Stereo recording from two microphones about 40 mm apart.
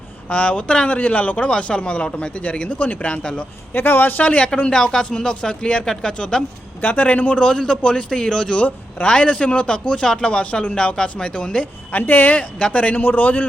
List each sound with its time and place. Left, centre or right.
0.3 s speech: left
1.5 s a man's voice: left
3.1 s a man's voice: left
3.7 s a man's voice: left
4.2 s speech: left
4.4 s a man's voice: left
6.8 s speech: left
7.3 s a man's voice: left
12.0 s speech: left
12.4 s speech: left
13.0 s speech: left